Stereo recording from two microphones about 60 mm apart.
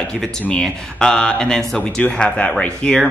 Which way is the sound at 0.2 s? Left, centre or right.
Centre.